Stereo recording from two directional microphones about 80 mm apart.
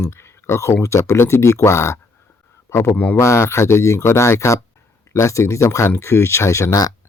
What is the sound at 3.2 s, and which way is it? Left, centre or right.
Speech, left.